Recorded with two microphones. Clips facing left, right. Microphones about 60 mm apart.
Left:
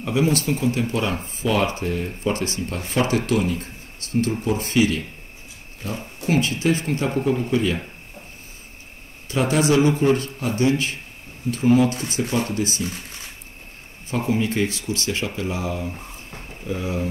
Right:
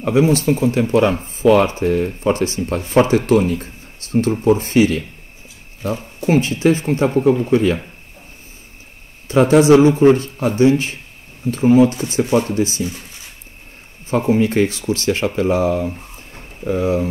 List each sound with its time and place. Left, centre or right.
0.0 s speech: right
9.3 s speech: right
14.1 s speech: right